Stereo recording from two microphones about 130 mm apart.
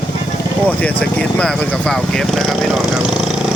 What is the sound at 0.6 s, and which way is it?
Speech, 10° left (ahead or behind).